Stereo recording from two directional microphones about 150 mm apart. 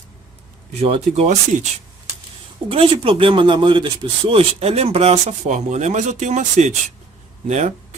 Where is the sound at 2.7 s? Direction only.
35° right (ahead or behind).